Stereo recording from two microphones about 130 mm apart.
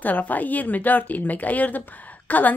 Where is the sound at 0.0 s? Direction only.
15° left (ahead or behind).